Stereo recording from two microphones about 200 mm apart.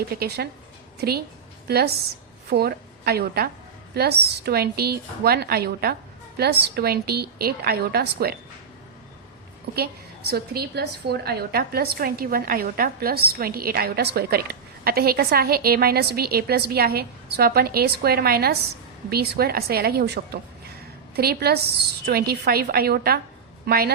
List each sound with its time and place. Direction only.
0.1 s a woman's voice: 50° right (ahead or behind)
9.7 s a woman's voice: 60° right (ahead or behind)